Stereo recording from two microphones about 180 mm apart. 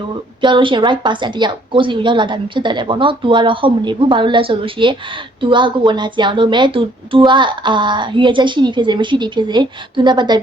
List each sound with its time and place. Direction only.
0.4 s speech: 25° right (ahead or behind)